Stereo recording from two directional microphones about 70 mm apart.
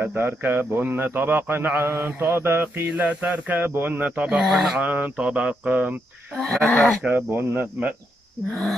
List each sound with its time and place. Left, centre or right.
0.0 s a man's voice: right
1.9 s mantra: right
2.9 s a man's voice: centre
4.4 s speech: centre
4.8 s a man's voice: right
6.3 s speech: centre
7.0 s a man's voice: right